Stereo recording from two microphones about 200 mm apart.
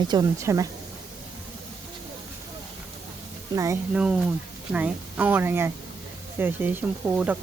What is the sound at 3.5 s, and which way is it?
Speech, 15° right (ahead or behind).